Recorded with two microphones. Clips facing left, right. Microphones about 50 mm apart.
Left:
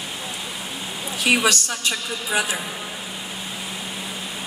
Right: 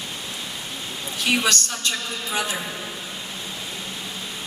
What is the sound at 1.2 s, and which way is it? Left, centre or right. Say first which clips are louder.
A woman's voice: left 3 dB; centre.